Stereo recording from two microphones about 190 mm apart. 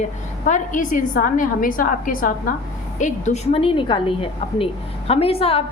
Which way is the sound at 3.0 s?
35° left (ahead or behind).